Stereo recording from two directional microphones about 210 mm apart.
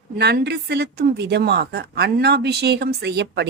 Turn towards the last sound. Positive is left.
turn(degrees=-55)  # may be behind; listen again after turning